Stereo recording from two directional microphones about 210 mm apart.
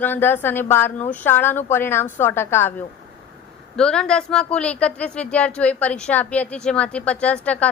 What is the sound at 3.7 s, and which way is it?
A woman's voice, 5° left (ahead or behind).